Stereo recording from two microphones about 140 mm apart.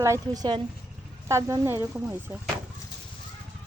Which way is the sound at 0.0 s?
20° right (ahead or behind).